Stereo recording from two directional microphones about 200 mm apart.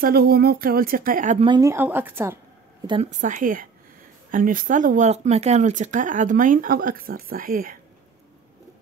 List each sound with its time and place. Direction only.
0.0 s speech: 50° right (ahead or behind)
1.4 s speech: 20° right (ahead or behind)
3.2 s speech: 40° right (ahead or behind)